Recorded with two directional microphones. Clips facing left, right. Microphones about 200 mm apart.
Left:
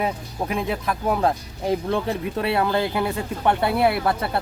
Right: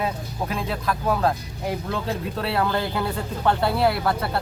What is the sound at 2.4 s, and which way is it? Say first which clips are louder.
Speech: left 3 dB; 20° left (ahead or behind).